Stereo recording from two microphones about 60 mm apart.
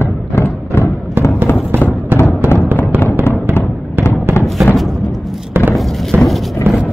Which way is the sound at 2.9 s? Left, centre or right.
Right.